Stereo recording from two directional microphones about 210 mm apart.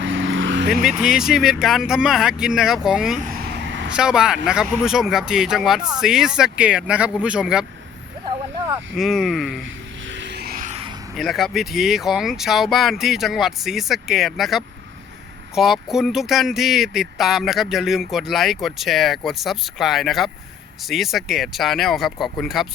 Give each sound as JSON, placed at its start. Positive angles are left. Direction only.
{"t": 0.0, "sound": "vehicle", "side_deg": -65}
{"t": 0.7, "sound": "speech", "side_deg": 0}
{"t": 3.3, "sound": "vehicle", "side_deg": -55}
{"t": 3.8, "sound": "speech", "side_deg": -5}
{"t": 9.0, "sound": "speech", "side_deg": 0}
{"t": 9.6, "sound": "a sound", "side_deg": -60}
{"t": 11.2, "sound": "speech", "side_deg": 0}